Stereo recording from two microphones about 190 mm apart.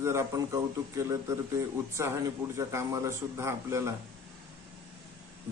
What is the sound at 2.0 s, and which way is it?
A man's voice, 15° right (ahead or behind).